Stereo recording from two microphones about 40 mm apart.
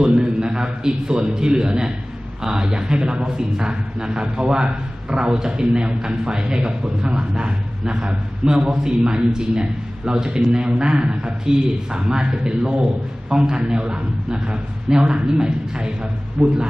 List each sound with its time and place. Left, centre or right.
0.0 s a man's voice: right